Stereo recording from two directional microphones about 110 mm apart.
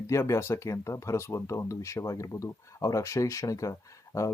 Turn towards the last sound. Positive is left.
turn(degrees=25)  # may be behind; listen again after turning